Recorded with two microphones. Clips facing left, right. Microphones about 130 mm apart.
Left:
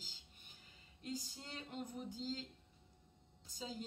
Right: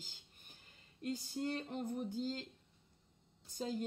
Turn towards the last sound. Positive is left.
turn(degrees=-55)  # may be behind; listen again after turning